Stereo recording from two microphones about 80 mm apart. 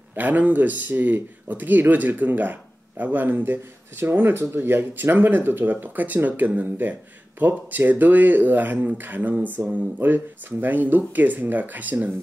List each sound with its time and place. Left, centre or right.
0.1 s speech: right